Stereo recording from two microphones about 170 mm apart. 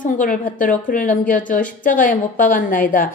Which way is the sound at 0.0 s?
50° left (ahead or behind).